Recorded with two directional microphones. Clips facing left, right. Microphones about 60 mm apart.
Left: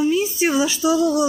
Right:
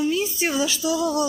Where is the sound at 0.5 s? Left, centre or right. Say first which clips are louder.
Left 3 dB; left.